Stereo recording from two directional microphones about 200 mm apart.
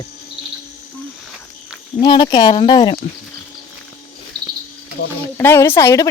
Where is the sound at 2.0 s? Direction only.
20° left (ahead or behind).